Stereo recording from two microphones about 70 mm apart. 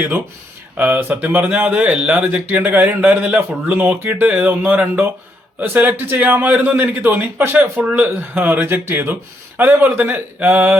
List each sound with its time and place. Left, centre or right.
0.8 s speech: right